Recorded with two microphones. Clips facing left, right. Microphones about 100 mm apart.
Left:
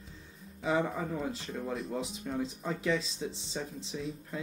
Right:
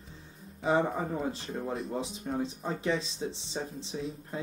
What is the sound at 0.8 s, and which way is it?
Speech, 30° right (ahead or behind).